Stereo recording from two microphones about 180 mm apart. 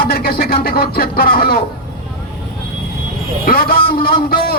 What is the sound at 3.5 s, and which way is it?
A man's voice, 55° left (ahead or behind).